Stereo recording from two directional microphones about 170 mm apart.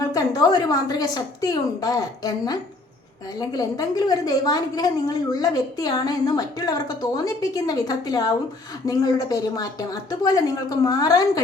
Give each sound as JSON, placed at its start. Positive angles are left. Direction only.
{"t": 0.0, "sound": "a woman's voice", "side_deg": 20}